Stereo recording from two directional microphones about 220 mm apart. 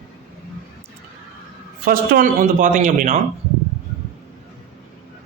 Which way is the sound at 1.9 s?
40° right (ahead or behind).